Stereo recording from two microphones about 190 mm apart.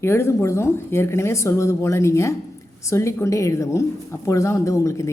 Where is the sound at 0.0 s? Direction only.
15° left (ahead or behind).